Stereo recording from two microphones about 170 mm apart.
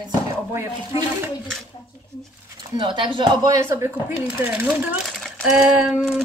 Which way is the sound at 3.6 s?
15° right (ahead or behind).